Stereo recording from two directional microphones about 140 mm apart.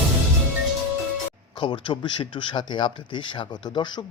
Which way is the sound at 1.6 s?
35° left (ahead or behind).